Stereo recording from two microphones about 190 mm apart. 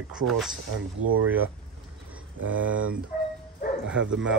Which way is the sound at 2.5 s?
10° right (ahead or behind).